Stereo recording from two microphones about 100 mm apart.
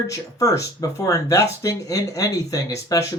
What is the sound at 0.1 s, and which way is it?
Speech, 35° left (ahead or behind).